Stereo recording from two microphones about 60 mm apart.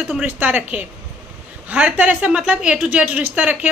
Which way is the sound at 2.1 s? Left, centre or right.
Centre.